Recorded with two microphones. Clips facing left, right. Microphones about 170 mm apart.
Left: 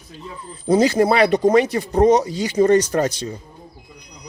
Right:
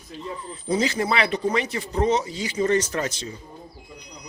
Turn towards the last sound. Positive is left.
turn(degrees=40)  # may be behind; listen again after turning